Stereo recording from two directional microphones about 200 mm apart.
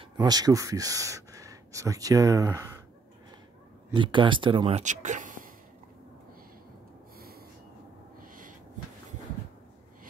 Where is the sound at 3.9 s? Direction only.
25° right (ahead or behind); by 5.5 s 40° right (ahead or behind).